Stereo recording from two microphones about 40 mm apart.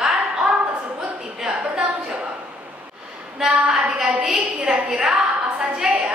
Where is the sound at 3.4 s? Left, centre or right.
Centre.